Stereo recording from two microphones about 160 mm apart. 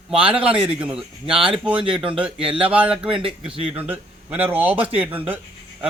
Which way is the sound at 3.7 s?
10° right (ahead or behind).